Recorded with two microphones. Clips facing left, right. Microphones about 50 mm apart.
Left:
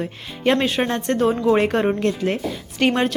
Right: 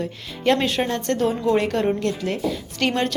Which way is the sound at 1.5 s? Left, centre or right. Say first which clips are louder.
Left 2 dB; left.